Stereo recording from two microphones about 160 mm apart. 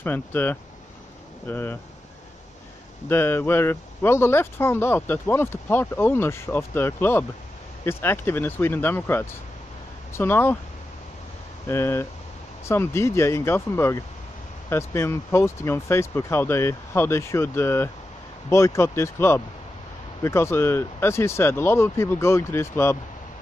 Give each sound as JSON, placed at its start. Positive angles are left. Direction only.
{"t": 0.0, "sound": "speech", "side_deg": 10}
{"t": 3.1, "sound": "speech", "side_deg": 15}
{"t": 11.6, "sound": "speech", "side_deg": 15}